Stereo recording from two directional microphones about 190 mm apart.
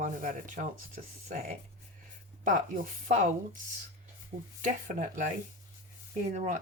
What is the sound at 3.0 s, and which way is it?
Speech, 40° right (ahead or behind).